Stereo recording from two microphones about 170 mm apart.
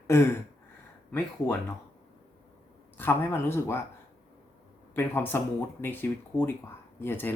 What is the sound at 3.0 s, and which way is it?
Speech, 15° left (ahead or behind).